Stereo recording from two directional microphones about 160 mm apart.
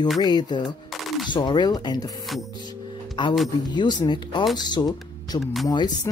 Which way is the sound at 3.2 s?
30° left (ahead or behind).